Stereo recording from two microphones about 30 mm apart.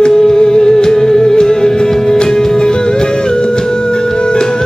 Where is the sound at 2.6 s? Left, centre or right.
Left.